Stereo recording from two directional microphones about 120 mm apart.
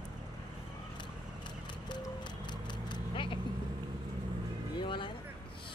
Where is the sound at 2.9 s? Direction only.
45° left (ahead or behind).